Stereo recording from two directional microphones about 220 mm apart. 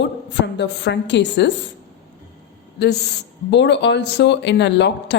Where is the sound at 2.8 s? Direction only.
50° left (ahead or behind).